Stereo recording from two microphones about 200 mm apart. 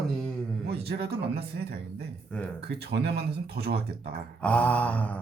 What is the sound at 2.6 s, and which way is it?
Speech, 55° right (ahead or behind).